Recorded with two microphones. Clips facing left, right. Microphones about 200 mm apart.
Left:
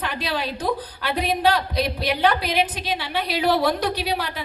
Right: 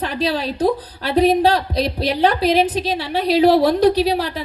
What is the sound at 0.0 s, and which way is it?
A woman's voice, 35° right (ahead or behind).